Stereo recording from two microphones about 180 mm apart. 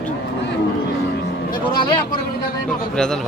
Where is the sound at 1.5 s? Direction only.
25° left (ahead or behind).